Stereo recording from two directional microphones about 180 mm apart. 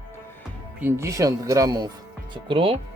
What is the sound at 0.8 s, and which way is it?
Speech, 15° right (ahead or behind).